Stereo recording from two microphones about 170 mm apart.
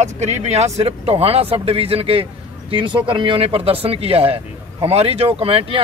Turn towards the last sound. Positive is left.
turn(degrees=-35)  # may be behind; listen again after turning